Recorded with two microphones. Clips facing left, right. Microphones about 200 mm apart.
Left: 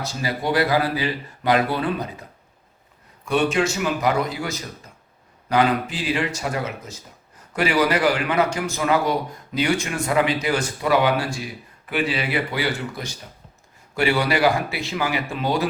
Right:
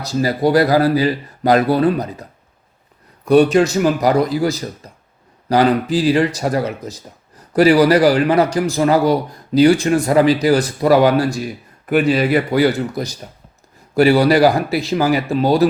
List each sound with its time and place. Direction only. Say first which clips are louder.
0.0 s speech: right 9 dB; 40° right (ahead or behind)
3.2 s speech: right 9 dB; 40° right (ahead or behind)
4.8 s a sound: right 6 dB; 35° right (ahead or behind)
5.5 s speech: right 6 dB; 35° right (ahead or behind)